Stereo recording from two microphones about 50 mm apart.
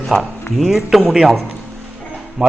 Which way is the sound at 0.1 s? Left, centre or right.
Centre.